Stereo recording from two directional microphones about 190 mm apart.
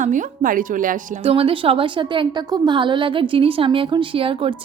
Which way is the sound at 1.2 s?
30° right (ahead or behind).